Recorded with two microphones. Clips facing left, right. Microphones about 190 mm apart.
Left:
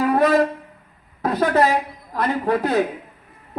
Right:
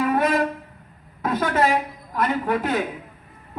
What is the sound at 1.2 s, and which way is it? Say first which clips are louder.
A man's voice: left 3 dB; 35° left (ahead or behind).